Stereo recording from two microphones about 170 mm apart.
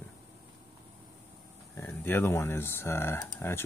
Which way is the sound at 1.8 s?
10° left (ahead or behind).